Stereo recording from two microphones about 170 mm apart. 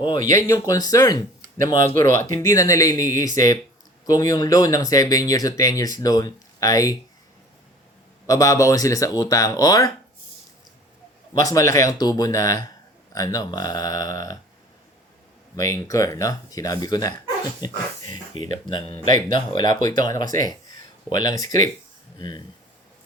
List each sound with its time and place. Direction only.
0.3 s speech: 20° left (ahead or behind)
2.0 s speech: 50° right (ahead or behind)
2.4 s speech: 20° left (ahead or behind)
8.3 s speech: 20° left (ahead or behind)
11.3 s speech: 20° left (ahead or behind)
15.5 s speech: 20° left (ahead or behind)
18.0 s speech: 45° right (ahead or behind)
18.7 s speech: 25° left (ahead or behind)